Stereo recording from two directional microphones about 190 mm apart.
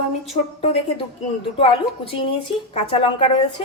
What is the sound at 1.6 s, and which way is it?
A woman's voice, 30° left (ahead or behind).